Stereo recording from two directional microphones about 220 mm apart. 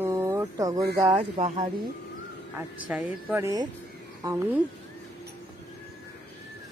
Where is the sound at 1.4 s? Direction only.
30° right (ahead or behind).